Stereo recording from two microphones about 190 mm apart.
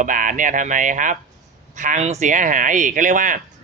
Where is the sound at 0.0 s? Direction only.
45° right (ahead or behind).